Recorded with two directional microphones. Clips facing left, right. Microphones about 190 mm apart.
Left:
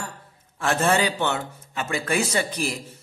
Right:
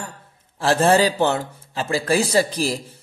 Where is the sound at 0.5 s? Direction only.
35° right (ahead or behind).